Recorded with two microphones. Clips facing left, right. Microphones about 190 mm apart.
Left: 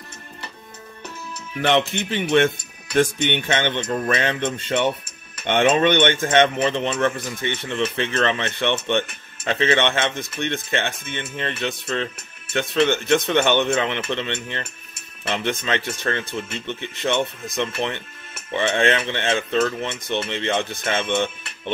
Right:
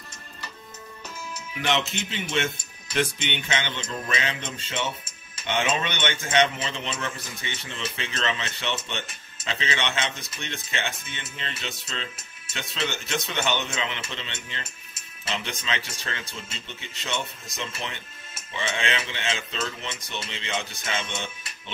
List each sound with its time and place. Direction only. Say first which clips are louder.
1.6 s speech: left 7 dB; 55° left (ahead or behind)